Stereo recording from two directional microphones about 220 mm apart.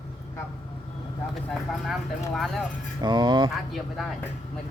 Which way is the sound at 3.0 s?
20° right (ahead or behind).